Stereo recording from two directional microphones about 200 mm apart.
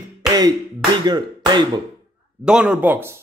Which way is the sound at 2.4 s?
5° right (ahead or behind).